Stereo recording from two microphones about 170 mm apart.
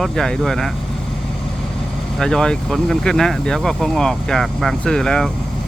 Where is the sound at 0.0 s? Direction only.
Centre (ahead or behind).